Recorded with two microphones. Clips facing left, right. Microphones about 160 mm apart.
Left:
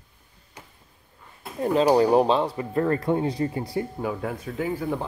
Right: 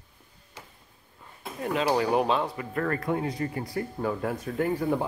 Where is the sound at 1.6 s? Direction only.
35° left (ahead or behind).